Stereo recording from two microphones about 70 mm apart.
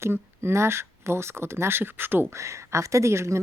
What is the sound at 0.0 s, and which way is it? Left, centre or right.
Speech, right.